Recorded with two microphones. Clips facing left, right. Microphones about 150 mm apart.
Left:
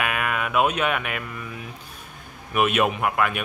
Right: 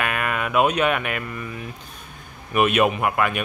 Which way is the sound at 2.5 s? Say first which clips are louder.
Right 2 dB; centre (ahead or behind).